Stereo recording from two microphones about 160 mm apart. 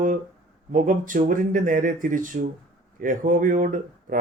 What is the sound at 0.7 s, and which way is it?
Speech, 55° right (ahead or behind).